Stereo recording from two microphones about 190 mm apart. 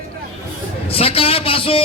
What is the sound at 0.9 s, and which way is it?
Speech, 30° left (ahead or behind).